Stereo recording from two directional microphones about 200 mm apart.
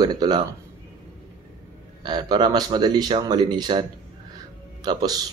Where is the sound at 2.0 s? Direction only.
20° right (ahead or behind).